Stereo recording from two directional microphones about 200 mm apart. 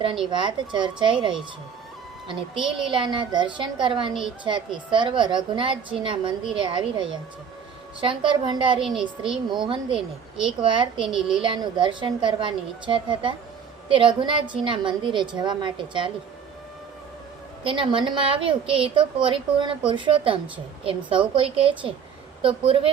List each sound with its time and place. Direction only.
0.3 s a woman's voice: 25° right (ahead or behind)
2.2 s a woman's voice: 25° right (ahead or behind)
2.6 s a woman's voice: centre (ahead or behind)
2.9 s a woman's voice: 25° right (ahead or behind)
8.8 s a woman's voice: centre (ahead or behind)
9.3 s a woman's voice: 25° right (ahead or behind)
11.1 s a woman's voice: 5° right (ahead or behind)
11.4 s a woman's voice: 25° right (ahead or behind)
17.6 s a woman's voice: 25° right (ahead or behind)